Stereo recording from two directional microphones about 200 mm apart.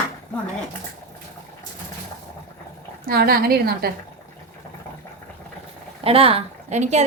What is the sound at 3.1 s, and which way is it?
Speech, 50° right (ahead or behind).